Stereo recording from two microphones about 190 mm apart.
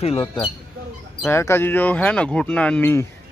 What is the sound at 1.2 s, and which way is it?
Speech, 15° left (ahead or behind).